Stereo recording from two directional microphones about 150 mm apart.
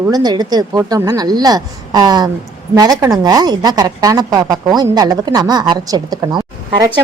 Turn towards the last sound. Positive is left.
turn(degrees=-25)  # may be behind; listen again after turning